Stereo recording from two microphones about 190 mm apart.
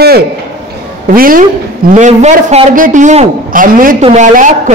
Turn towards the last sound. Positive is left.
turn(degrees=-40)  # may be behind; listen again after turning